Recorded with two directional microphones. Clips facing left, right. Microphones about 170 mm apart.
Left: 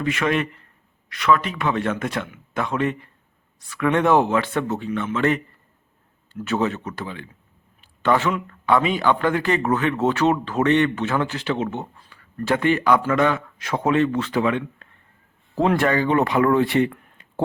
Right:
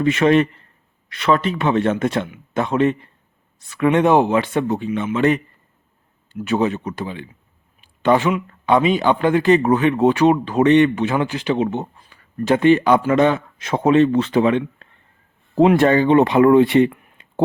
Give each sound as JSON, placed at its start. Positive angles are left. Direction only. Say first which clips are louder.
{"t": 0.0, "sound": "speech", "louder": "right 7 dB", "side_deg": -25}